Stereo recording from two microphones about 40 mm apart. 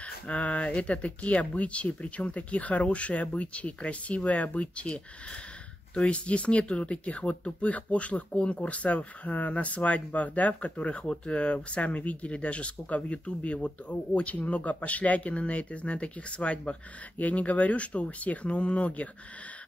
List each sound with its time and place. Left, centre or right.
0.0 s speech: left